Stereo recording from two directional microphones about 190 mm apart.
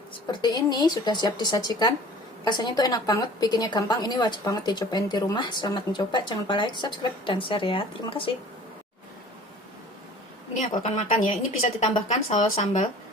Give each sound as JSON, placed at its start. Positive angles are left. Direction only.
{"t": 0.3, "sound": "a woman's voice", "side_deg": 20}
{"t": 10.5, "sound": "speech", "side_deg": 40}